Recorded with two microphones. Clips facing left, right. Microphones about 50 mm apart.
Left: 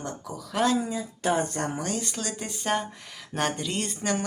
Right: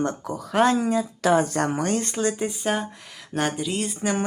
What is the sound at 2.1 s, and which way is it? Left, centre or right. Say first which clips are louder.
Speech: right 9 dB; right.